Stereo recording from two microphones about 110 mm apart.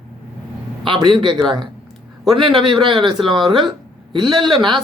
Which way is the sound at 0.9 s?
45° right (ahead or behind).